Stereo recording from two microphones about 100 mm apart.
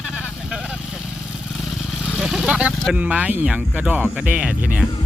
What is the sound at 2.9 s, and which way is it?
Speech, 15° right (ahead or behind).